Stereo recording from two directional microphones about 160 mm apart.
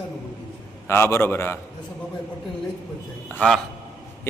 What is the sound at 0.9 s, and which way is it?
Speech, 15° left (ahead or behind).